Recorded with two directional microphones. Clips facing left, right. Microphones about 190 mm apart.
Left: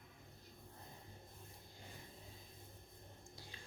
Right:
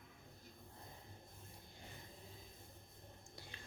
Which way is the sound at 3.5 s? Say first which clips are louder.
Right 1 dB; 65° right (ahead or behind).